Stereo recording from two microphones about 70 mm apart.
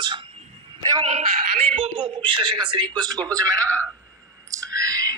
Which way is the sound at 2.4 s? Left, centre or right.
Right.